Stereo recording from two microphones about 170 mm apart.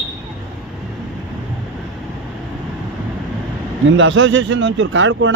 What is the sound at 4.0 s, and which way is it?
Speech, 90° right.